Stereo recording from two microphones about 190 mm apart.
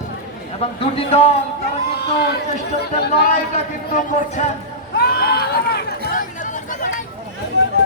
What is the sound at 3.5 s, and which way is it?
Speech, 45° left (ahead or behind).